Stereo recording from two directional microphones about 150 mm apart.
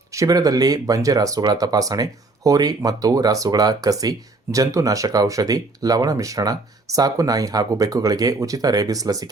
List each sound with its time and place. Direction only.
0.1 s speech: 25° right (ahead or behind)